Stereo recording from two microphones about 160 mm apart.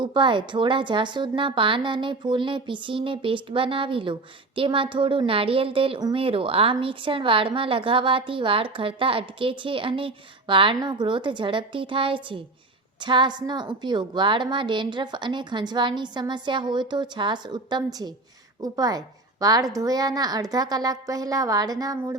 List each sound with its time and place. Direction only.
0.0 s a woman's voice: 30° right (ahead or behind)